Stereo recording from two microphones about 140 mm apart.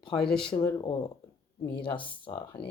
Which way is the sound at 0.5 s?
35° left (ahead or behind).